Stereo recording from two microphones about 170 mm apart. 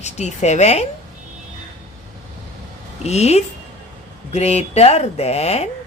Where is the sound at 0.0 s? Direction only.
40° left (ahead or behind).